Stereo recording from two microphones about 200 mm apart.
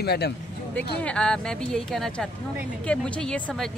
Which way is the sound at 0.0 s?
55° left (ahead or behind).